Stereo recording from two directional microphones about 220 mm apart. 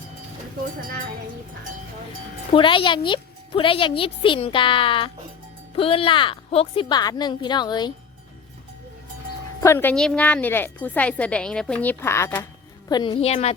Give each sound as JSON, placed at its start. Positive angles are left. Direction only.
{"t": 2.5, "sound": "a woman's voice", "side_deg": 25}
{"t": 9.6, "sound": "a woman's voice", "side_deg": 10}